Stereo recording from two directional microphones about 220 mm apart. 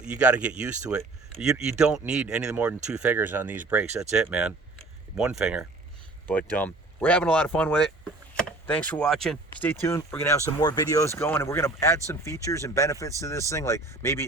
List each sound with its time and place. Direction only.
0.0 s speech: 5° right (ahead or behind)
4.1 s a sound: 5° right (ahead or behind)
5.4 s speech: 5° right (ahead or behind)
6.2 s speech: 5° left (ahead or behind)